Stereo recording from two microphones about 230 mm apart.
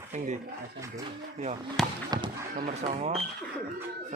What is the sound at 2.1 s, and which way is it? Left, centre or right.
Speech, centre.